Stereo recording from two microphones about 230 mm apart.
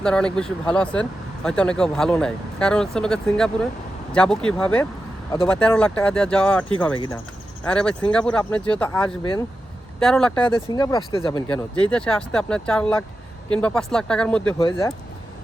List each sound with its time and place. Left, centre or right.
0.0 s speech: centre
10.5 s speech: centre
11.4 s speech: centre
14.6 s speech: centre